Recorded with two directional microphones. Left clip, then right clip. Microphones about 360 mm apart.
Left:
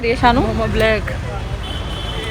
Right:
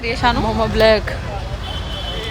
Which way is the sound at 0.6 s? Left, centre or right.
Right.